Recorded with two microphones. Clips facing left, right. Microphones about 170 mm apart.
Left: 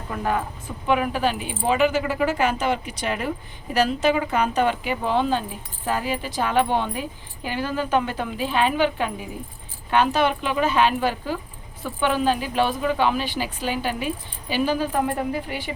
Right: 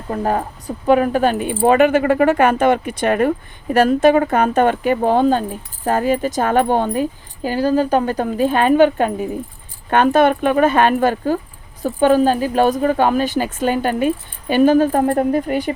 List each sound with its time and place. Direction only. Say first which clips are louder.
0.1 s a woman's voice: right 6 dB; 40° right (ahead or behind)